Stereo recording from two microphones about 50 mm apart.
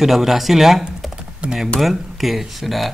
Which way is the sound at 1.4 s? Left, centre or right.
Right.